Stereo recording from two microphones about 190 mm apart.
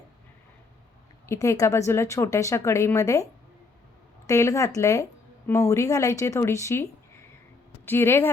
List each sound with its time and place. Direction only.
1.3 s speech: 15° left (ahead or behind)
4.3 s speech: 15° left (ahead or behind)
7.9 s speech: 10° left (ahead or behind)